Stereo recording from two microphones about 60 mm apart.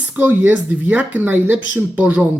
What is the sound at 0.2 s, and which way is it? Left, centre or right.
Speech, right.